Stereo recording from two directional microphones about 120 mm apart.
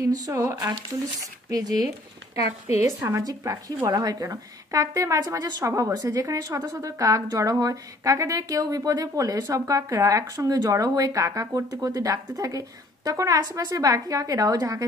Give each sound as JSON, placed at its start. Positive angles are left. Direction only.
{"t": 0.0, "sound": "a woman's voice", "side_deg": -30}
{"t": 2.3, "sound": "speech", "side_deg": 60}
{"t": 3.0, "sound": "a woman's voice", "side_deg": -25}